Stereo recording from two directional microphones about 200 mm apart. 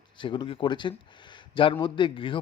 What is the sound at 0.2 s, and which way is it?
Speech, 25° left (ahead or behind).